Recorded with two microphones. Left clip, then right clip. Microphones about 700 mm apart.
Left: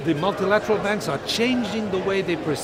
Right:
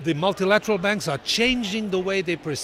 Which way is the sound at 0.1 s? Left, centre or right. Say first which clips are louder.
Even; right.